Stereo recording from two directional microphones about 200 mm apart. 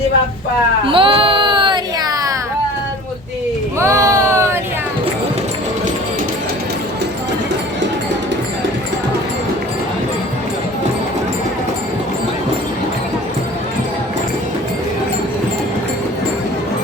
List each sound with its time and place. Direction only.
0.9 s music: 25° right (ahead or behind)
3.8 s baby cry: 15° right (ahead or behind)